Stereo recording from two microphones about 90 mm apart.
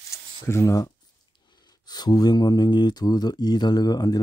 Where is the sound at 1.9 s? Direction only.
50° left (ahead or behind).